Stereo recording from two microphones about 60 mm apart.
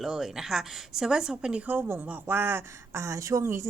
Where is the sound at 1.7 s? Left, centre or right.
Right.